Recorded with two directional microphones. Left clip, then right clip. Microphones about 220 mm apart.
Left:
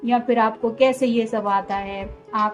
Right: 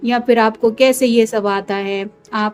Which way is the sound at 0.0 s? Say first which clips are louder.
Right 5 dB; 40° right (ahead or behind).